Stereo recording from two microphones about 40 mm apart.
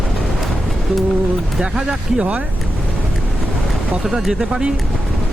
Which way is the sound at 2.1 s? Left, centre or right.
Right.